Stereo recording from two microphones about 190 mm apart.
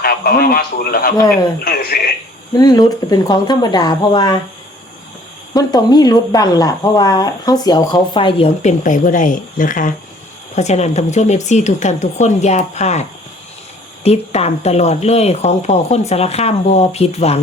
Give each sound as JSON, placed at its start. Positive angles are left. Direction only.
{"t": 0.0, "sound": "speech", "side_deg": 55}
{"t": 2.6, "sound": "speech", "side_deg": 20}
{"t": 5.5, "sound": "speech", "side_deg": 20}